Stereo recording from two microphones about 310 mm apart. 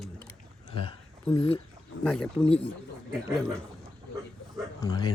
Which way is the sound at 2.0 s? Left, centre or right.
Centre.